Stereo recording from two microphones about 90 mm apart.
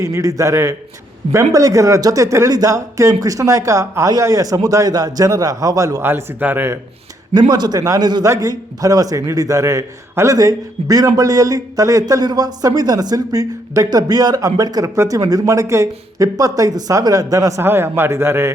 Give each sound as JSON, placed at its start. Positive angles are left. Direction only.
{"t": 0.0, "sound": "a man's voice", "side_deg": -40}
{"t": 6.0, "sound": "a man's voice", "side_deg": -25}
{"t": 7.3, "sound": "a man's voice", "side_deg": -50}
{"t": 17.6, "sound": "a man's voice", "side_deg": -25}